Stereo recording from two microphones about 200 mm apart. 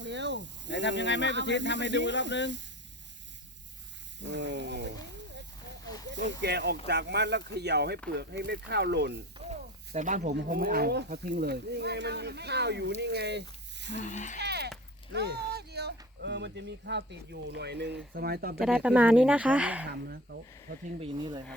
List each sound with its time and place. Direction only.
0.0 s snake: 60° right (ahead or behind)
1.0 s speech: 65° left (ahead or behind)
4.2 s speech: 60° right (ahead or behind)
5.3 s a sound: 60° right (ahead or behind)
6.4 s speech: 60° right (ahead or behind)
9.4 s snake: 35° right (ahead or behind)
10.3 s speech: 50° right (ahead or behind)
14.0 s speech: 40° left (ahead or behind)
14.3 s a sound: 55° right (ahead or behind)
15.1 s speech: 55° right (ahead or behind)
18.6 s speech: 5° right (ahead or behind)
19.9 s speech: 55° right (ahead or behind)
21.0 s speech: 25° right (ahead or behind)